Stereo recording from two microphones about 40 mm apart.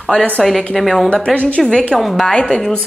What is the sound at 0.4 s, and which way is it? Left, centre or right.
Speech, centre.